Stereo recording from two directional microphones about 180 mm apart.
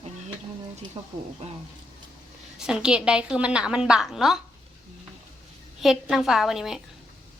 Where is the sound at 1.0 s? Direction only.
30° right (ahead or behind).